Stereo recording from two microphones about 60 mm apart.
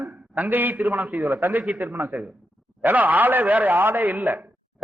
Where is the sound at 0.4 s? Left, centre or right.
Right.